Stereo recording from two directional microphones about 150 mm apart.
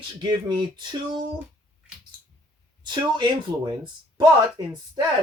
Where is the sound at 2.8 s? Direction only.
30° right (ahead or behind).